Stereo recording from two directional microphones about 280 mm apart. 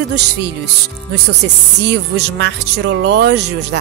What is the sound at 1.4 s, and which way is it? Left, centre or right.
Speech, right.